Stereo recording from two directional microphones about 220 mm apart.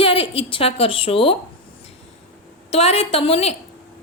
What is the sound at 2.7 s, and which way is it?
Speech, 25° left (ahead or behind).